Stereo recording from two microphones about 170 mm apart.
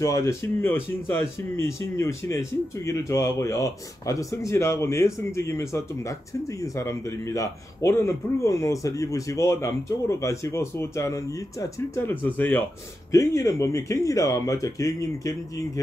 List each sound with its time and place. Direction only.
0.0 s a man's voice: 15° left (ahead or behind)